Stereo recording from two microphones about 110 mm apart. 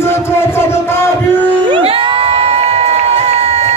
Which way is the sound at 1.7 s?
55° right (ahead or behind).